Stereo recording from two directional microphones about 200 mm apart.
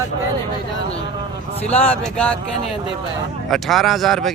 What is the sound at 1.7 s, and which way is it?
Speech, 5° left (ahead or behind).